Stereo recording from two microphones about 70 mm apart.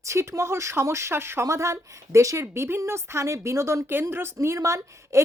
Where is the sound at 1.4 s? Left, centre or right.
Right.